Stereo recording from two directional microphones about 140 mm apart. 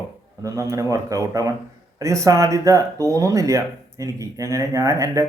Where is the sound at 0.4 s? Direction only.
20° right (ahead or behind).